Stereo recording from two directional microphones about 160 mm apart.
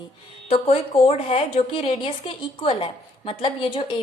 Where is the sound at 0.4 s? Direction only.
40° left (ahead or behind).